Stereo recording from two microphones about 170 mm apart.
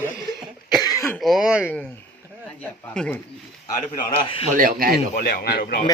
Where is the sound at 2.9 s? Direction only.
5° left (ahead or behind).